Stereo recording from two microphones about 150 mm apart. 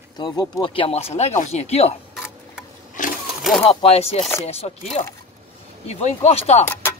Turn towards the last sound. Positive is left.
turn(degrees=45)  # may be behind; listen again after turning